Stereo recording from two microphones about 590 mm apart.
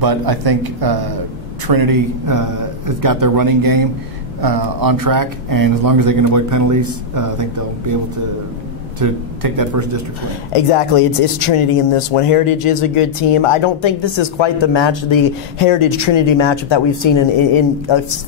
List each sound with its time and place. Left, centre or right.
0.0 s speech: right
9.0 s speech: right
10.5 s speech: left